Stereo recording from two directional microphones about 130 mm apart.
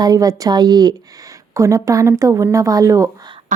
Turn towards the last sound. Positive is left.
turn(degrees=-25)  # may be behind; listen again after turning